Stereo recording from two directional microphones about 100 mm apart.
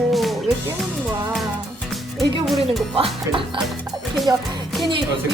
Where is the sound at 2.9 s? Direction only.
60° right (ahead or behind).